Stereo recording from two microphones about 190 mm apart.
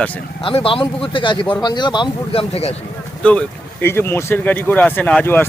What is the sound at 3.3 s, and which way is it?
Speech, 10° left (ahead or behind).